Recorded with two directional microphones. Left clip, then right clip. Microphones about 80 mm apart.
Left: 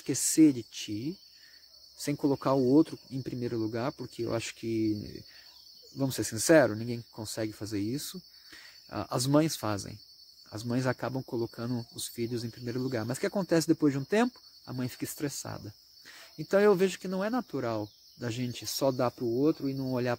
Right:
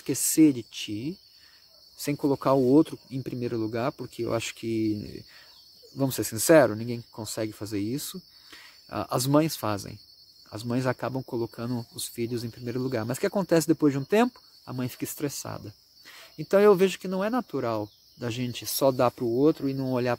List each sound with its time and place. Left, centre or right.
0.0 s speech: right
2.4 s speech: right
16.6 s speech: right
17.0 s speech: right
19.0 s speech: right
19.9 s speech: right